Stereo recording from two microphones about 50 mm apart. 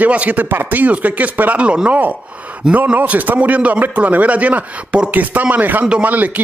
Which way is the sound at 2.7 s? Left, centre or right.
Right.